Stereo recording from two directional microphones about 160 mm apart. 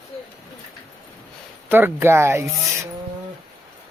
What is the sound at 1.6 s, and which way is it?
Speech, 10° right (ahead or behind).